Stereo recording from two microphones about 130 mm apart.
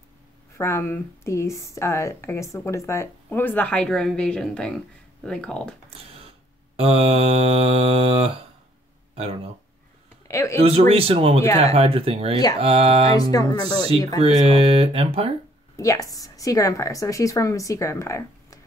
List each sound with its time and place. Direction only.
0.6 s a woman's voice: 20° left (ahead or behind)
6.8 s mantra: 50° right (ahead or behind)
9.1 s speech: 50° right (ahead or behind)
10.2 s speech: 20° left (ahead or behind)
10.6 s mantra: 50° right (ahead or behind)
13.2 s speech: 30° left (ahead or behind)
14.2 s mantra: 45° right (ahead or behind)
15.7 s a woman's voice: 25° left (ahead or behind)